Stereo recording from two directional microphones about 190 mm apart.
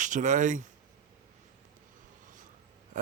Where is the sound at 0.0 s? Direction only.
40° right (ahead or behind).